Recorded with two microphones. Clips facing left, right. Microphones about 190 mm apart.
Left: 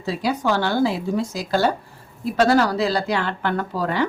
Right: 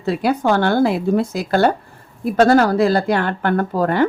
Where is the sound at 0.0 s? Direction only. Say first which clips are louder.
Right 5 dB; 55° right (ahead or behind).